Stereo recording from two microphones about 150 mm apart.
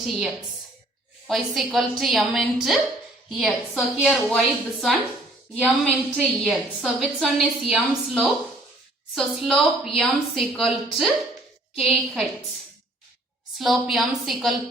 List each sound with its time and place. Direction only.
1.3 s a woman's voice: centre (ahead or behind)
6.1 s a woman's voice: 5° right (ahead or behind)
13.6 s a woman's voice: centre (ahead or behind)